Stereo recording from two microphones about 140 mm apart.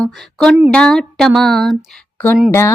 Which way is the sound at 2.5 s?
20° left (ahead or behind).